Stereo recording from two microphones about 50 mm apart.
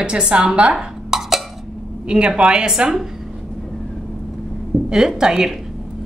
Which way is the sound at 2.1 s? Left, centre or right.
Right.